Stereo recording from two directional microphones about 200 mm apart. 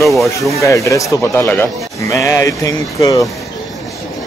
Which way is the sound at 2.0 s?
15° left (ahead or behind).